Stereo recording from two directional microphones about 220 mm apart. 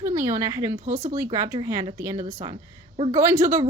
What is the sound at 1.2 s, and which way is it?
Speech, 10° right (ahead or behind).